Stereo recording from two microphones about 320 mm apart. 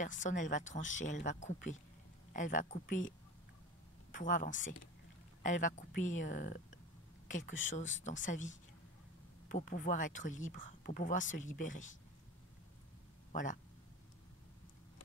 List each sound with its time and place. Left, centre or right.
0.0 s speech: left
13.3 s speech: left